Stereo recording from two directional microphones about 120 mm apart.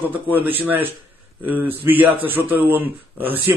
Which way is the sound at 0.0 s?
15° right (ahead or behind).